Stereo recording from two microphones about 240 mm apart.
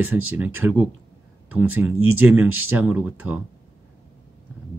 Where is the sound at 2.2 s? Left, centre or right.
Centre.